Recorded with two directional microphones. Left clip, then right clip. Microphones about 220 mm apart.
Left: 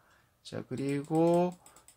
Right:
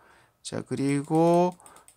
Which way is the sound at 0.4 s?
35° right (ahead or behind).